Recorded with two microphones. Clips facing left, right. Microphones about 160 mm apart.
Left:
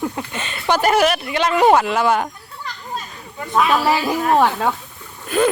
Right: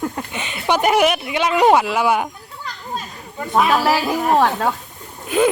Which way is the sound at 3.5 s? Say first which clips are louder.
Right 1 dB; 15° right (ahead or behind).